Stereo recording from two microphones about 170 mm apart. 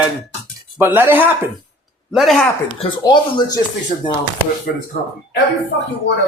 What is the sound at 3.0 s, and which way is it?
Speech, 25° left (ahead or behind).